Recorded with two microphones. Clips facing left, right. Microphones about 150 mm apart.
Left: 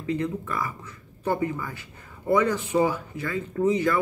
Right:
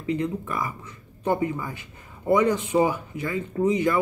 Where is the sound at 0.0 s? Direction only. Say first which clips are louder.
Right 1 dB; 20° right (ahead or behind).